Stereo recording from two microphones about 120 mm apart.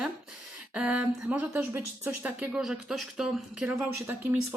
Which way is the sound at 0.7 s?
10° right (ahead or behind).